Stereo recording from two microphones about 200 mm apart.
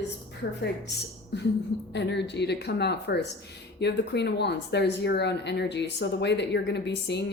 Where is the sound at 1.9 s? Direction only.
60° left (ahead or behind).